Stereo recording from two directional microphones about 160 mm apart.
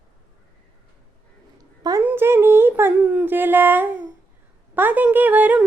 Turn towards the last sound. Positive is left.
turn(degrees=-10)  # may be behind; listen again after turning